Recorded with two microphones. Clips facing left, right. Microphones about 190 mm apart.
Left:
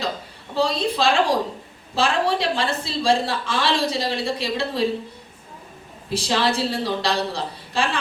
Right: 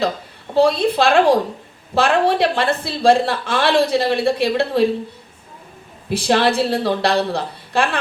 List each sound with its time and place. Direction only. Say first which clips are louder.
0.5 s a woman's voice: right 7 dB; 60° right (ahead or behind)
6.1 s a woman's voice: right 5 dB; 60° right (ahead or behind)